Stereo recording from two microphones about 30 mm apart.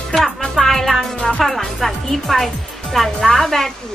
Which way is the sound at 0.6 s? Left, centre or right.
Centre.